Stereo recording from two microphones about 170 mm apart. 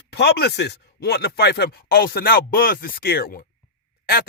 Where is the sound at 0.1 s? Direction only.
75° left (ahead or behind).